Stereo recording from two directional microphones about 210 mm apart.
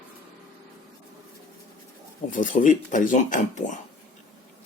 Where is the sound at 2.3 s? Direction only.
40° left (ahead or behind).